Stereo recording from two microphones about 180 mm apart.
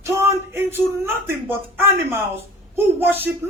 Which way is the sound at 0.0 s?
15° right (ahead or behind).